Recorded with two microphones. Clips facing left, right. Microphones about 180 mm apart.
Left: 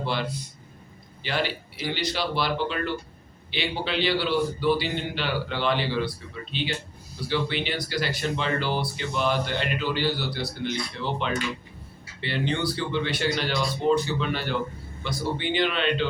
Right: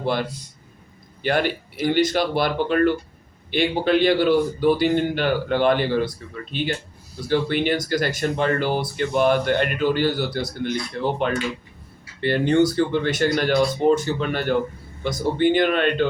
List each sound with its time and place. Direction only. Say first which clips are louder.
0.0 s a man's voice: right 5 dB; 50° right (ahead or behind)